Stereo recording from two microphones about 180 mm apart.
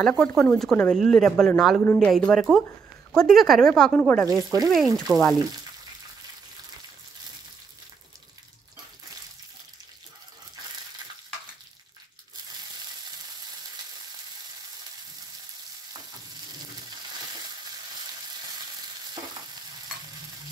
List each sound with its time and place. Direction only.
0.0 s speech: 5° left (ahead or behind)
4.3 s speech: 20° right (ahead or behind)
4.6 s speech: centre (ahead or behind)